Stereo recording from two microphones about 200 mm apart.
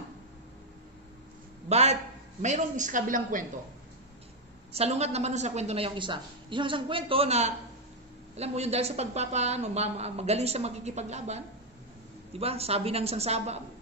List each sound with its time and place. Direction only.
1.7 s speech: 35° right (ahead or behind)
4.7 s speech: 30° right (ahead or behind)